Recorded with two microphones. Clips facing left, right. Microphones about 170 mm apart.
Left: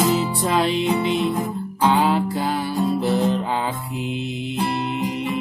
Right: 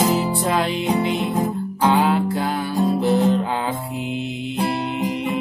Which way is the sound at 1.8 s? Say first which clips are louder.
Right 1 dB; centre (ahead or behind).